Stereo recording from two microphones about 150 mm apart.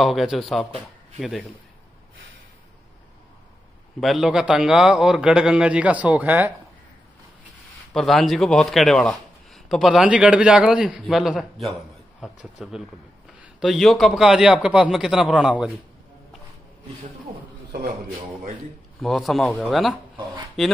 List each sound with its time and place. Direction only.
0.0 s a man's voice: centre (ahead or behind)
4.0 s a man's voice: centre (ahead or behind)
7.9 s a man's voice: 5° left (ahead or behind)
18.9 s a man's voice: centre (ahead or behind)